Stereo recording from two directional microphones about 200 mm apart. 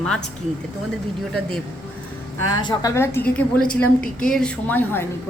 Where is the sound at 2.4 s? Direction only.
20° left (ahead or behind).